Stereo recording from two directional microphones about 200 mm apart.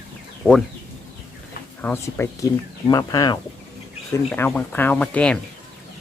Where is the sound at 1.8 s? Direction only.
10° left (ahead or behind).